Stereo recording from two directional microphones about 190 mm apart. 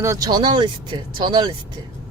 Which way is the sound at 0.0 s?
15° right (ahead or behind).